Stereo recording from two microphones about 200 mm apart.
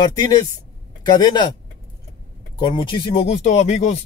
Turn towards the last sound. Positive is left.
turn(degrees=35)  # may be behind; listen again after turning